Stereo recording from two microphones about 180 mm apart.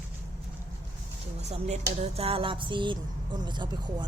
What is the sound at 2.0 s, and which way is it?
Music, 35° right (ahead or behind).